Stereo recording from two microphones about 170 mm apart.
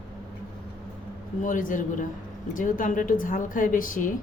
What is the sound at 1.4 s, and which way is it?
A woman's voice, 50° left (ahead or behind).